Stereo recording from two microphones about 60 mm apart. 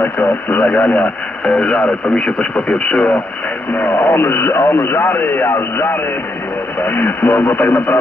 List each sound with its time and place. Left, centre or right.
0.0 s speech: left
1.4 s speech: centre
3.7 s speech: left